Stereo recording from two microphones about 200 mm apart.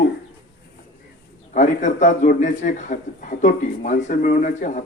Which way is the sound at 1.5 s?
35° left (ahead or behind).